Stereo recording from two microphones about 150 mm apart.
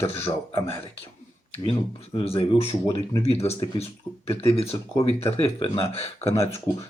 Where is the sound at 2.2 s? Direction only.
35° left (ahead or behind).